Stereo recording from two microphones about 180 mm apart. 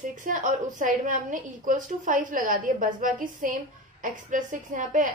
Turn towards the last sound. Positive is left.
turn(degrees=-45)  # may be behind; listen again after turning